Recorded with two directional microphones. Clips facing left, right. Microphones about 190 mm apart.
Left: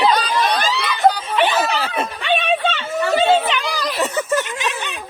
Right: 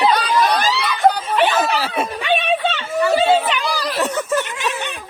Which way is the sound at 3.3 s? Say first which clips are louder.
Even; centre (ahead or behind).